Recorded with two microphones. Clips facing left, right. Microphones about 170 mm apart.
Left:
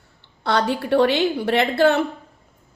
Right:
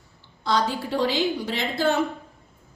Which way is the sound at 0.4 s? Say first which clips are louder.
Left 3 dB; 65° left (ahead or behind).